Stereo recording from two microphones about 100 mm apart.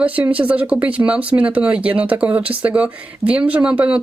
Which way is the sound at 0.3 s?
15° right (ahead or behind).